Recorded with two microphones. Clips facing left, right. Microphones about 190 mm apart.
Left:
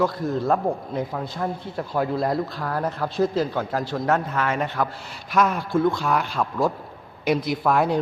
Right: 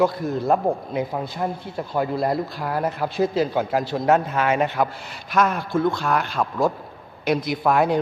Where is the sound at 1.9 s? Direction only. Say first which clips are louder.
Right 1 dB; centre (ahead or behind); by 4.9 s 20° right (ahead or behind).